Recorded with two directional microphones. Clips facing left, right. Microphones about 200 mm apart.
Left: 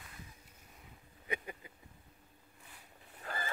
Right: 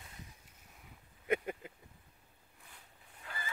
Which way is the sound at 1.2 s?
65° right (ahead or behind).